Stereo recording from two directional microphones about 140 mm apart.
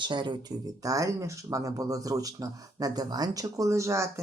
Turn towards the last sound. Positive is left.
turn(degrees=-20)  # may be behind; listen again after turning